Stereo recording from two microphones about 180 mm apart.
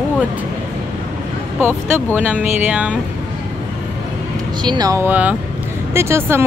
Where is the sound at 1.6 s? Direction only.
10° right (ahead or behind).